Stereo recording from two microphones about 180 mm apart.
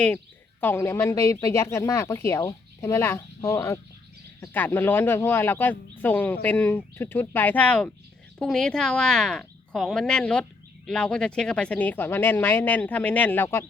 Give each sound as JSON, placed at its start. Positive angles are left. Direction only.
{"t": 0.6, "sound": "speech", "side_deg": 10}